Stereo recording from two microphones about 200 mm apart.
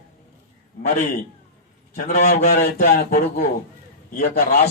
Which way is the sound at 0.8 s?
45° left (ahead or behind).